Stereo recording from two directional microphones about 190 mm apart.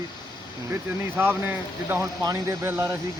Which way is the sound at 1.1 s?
10° right (ahead or behind).